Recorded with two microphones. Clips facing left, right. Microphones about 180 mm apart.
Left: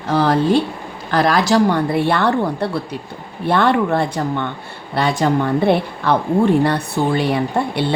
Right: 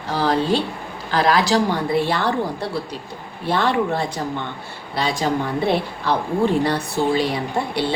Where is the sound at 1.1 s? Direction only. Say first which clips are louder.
Left 3 dB; 50° left (ahead or behind).